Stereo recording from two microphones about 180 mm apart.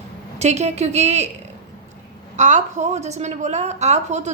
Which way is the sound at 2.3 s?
45° right (ahead or behind).